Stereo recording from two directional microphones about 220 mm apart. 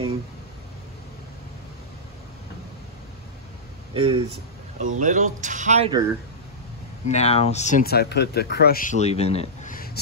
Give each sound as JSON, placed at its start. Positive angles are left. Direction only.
{"t": 3.9, "sound": "speech", "side_deg": -25}
{"t": 7.1, "sound": "speech", "side_deg": 30}